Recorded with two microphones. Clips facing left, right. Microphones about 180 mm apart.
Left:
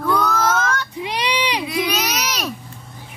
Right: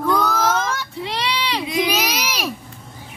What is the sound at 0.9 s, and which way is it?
Child singing, 15° left (ahead or behind).